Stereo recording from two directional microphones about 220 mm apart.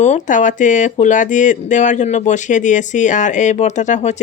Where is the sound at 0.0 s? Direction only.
35° left (ahead or behind).